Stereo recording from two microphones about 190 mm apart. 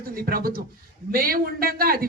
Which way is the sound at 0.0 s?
50° right (ahead or behind).